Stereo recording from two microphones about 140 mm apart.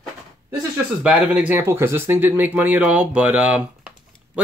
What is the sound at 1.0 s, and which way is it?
Speech, 5° right (ahead or behind).